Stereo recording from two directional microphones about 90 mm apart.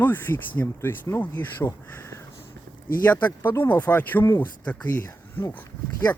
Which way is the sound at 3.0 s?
20° left (ahead or behind).